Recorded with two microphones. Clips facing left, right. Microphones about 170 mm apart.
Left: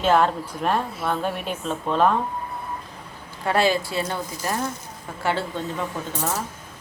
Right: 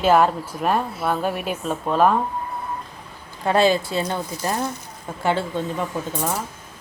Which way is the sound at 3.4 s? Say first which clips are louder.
Right 3 dB; 20° right (ahead or behind).